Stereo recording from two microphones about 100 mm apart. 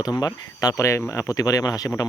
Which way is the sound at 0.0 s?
40° left (ahead or behind).